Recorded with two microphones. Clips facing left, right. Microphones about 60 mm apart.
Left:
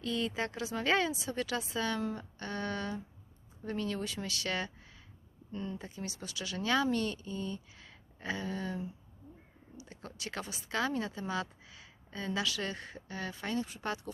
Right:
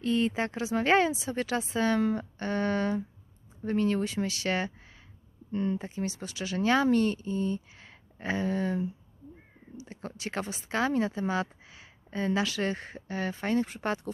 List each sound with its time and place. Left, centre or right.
0.0 s speech: right
5.5 s speech: right